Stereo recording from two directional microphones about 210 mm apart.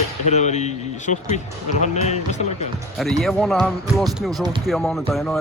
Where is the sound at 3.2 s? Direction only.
Centre (ahead or behind).